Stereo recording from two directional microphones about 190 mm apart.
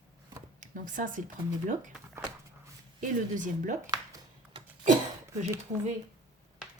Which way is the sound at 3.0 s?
45° right (ahead or behind).